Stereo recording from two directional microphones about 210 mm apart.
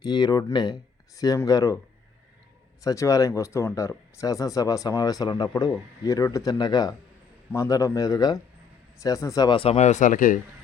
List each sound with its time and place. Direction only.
0.0 s speech: 20° left (ahead or behind)
2.8 s a man's voice: 15° left (ahead or behind); by 10.4 s 40° left (ahead or behind)